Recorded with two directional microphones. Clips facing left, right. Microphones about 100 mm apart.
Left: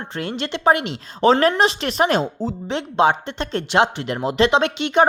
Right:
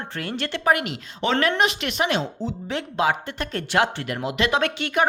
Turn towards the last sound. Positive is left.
turn(degrees=20)  # may be behind; listen again after turning